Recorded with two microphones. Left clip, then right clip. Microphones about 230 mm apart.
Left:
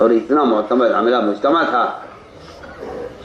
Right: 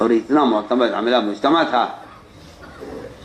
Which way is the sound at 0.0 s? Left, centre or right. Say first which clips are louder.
Left 3 dB; right.